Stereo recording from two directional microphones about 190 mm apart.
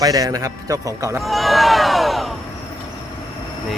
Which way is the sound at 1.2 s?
Centre (ahead or behind).